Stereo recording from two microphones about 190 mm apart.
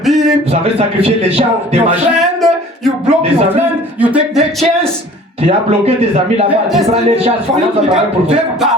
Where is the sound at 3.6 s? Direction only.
10° right (ahead or behind).